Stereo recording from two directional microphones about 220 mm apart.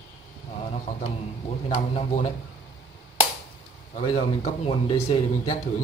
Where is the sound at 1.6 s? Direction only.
30° left (ahead or behind).